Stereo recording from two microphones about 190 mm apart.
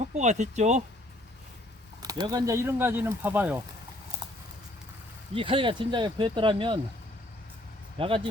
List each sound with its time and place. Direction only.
0.0 s speech: 40° right (ahead or behind)
2.0 s speech: 20° right (ahead or behind)
5.3 s speech: 30° right (ahead or behind)
7.9 s speech: 30° right (ahead or behind)